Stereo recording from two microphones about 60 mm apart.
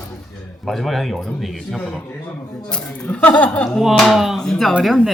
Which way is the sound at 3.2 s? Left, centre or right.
Left.